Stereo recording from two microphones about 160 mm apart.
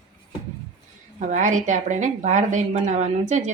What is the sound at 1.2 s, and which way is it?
Speech, 50° right (ahead or behind).